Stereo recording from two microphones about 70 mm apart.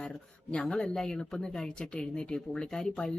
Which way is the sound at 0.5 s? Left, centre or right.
Centre.